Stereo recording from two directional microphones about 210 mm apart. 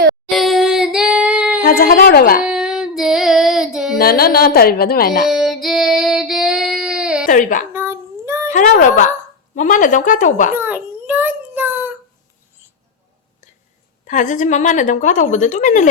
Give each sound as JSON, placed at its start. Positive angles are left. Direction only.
{"t": 0.3, "sound": "female singing", "side_deg": 0}
{"t": 1.6, "sound": "speech", "side_deg": 45}
{"t": 2.4, "sound": "child singing", "side_deg": -5}
{"t": 3.9, "sound": "speech", "side_deg": 45}
{"t": 5.3, "sound": "child singing", "side_deg": 0}
{"t": 7.3, "sound": "a woman's voice", "side_deg": 40}
{"t": 7.7, "sound": "child singing", "side_deg": -10}
{"t": 8.5, "sound": "a woman's voice", "side_deg": 35}
{"t": 10.5, "sound": "a sound", "side_deg": -10}
{"t": 14.0, "sound": "a woman's voice", "side_deg": 35}